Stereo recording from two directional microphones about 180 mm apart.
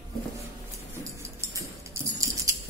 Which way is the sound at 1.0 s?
15° right (ahead or behind).